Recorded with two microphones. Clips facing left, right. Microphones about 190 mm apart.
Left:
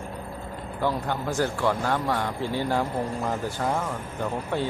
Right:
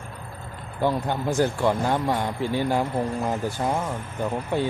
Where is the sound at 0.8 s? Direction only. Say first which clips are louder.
Right 3 dB; 20° right (ahead or behind).